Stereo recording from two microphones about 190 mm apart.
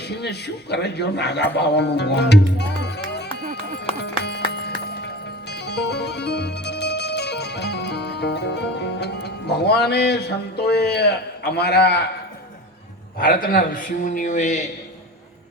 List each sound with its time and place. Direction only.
0.1 s a man's voice: 60° left (ahead or behind)
2.8 s music: 60° left (ahead or behind)
13.1 s a man's voice: 50° left (ahead or behind)